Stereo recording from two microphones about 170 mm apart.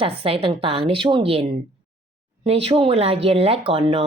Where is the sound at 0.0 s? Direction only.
35° right (ahead or behind).